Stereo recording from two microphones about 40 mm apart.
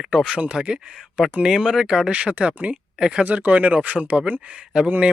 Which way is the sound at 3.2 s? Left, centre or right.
Right.